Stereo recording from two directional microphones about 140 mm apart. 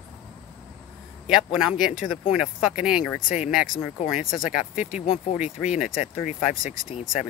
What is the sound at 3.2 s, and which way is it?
Speech, 70° left (ahead or behind).